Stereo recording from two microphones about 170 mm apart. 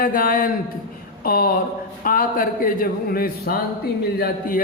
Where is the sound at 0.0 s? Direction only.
60° left (ahead or behind).